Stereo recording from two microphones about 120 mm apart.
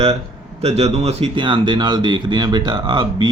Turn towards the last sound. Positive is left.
turn(degrees=-40)  # may be behind; listen again after turning